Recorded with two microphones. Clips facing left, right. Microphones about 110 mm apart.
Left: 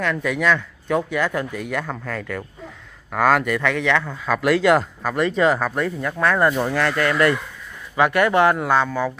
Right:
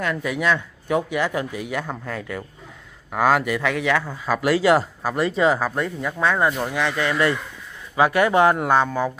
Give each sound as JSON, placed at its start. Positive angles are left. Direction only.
{"t": 0.0, "sound": "speech", "side_deg": -5}
{"t": 6.5, "sound": "speech", "side_deg": 0}
{"t": 6.8, "sound": "speech", "side_deg": -15}
{"t": 8.5, "sound": "speech", "side_deg": -45}
{"t": 8.7, "sound": "speech", "side_deg": -20}